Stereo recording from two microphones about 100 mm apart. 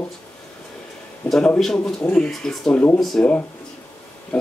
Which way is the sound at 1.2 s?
5° left (ahead or behind).